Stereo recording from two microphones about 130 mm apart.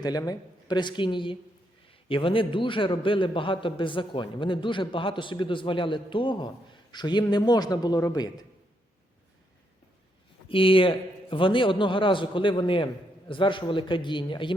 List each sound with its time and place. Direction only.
0.0 s a man's voice: 30° left (ahead or behind)
10.5 s a man's voice: 45° left (ahead or behind)